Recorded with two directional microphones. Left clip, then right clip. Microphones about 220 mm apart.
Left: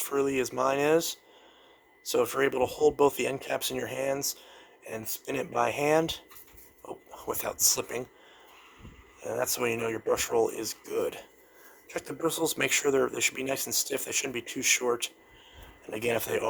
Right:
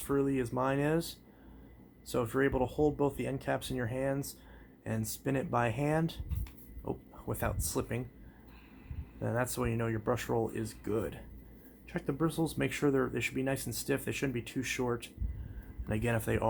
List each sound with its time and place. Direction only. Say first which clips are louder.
0.0 s speech: left 4 dB; 35° left (ahead or behind)
9.4 s speech: left 7 dB; 40° left (ahead or behind)